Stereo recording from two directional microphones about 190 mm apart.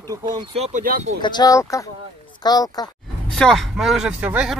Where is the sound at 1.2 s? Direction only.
20° left (ahead or behind).